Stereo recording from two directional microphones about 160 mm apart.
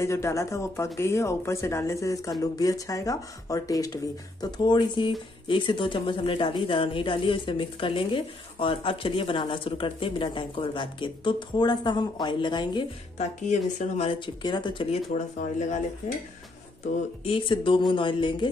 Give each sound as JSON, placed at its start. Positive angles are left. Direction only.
{"t": 0.0, "sound": "speech", "side_deg": 20}
{"t": 13.2, "sound": "speech", "side_deg": 45}
{"t": 17.2, "sound": "speech", "side_deg": 35}